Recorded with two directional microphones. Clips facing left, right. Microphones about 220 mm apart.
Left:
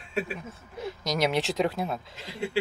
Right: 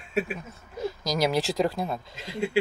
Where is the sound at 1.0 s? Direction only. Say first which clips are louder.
Right 1 dB; centre (ahead or behind).